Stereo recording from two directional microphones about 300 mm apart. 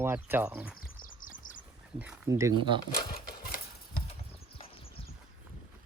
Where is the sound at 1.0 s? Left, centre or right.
Left.